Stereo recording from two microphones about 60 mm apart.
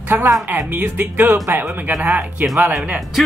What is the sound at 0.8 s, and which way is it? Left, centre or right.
Speech, right.